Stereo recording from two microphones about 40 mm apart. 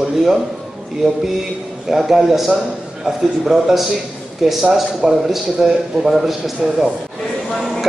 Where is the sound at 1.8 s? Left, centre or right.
Centre.